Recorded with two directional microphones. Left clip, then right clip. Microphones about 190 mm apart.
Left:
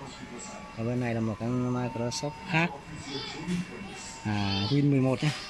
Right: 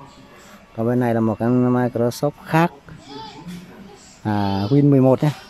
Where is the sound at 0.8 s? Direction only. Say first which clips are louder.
Right 13 dB; 30° right (ahead or behind).